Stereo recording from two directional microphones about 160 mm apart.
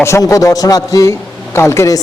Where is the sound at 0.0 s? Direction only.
20° left (ahead or behind).